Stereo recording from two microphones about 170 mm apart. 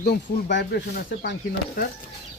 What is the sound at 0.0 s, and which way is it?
Speech, 80° left.